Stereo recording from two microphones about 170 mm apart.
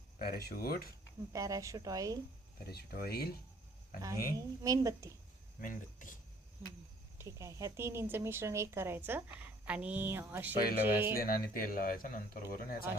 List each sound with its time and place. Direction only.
0.2 s speech: 65° left (ahead or behind)
1.3 s a woman's voice: 20° right (ahead or behind)
2.6 s speech: 65° left (ahead or behind)
4.4 s a woman's voice: 20° right (ahead or behind)
5.5 s speech: 50° left (ahead or behind)
7.2 s a woman's voice: 15° right (ahead or behind)
11.2 s speech: 60° left (ahead or behind)